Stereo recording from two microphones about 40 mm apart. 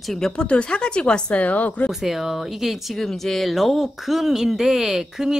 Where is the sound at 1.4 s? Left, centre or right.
Left.